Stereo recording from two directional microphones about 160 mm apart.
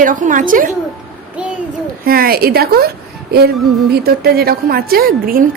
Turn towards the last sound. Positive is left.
turn(degrees=-65)  # may be behind; listen again after turning